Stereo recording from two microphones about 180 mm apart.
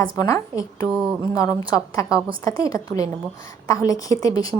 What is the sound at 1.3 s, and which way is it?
A woman's voice, 20° left (ahead or behind).